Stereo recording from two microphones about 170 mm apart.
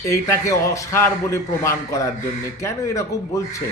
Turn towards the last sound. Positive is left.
turn(degrees=20)  # may be behind; listen again after turning